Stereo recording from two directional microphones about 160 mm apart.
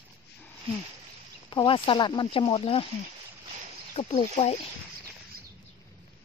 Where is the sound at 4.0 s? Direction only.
35° left (ahead or behind).